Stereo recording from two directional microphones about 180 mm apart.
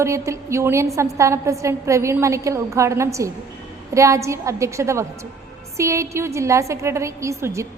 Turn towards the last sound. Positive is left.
turn(degrees=-15)  # may be behind; listen again after turning